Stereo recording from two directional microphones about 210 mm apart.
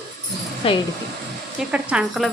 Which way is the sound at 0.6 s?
25° left (ahead or behind).